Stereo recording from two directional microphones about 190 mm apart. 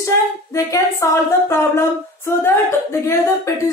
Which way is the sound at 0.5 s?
15° left (ahead or behind).